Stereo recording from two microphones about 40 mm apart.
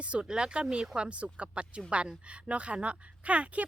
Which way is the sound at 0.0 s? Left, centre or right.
Right.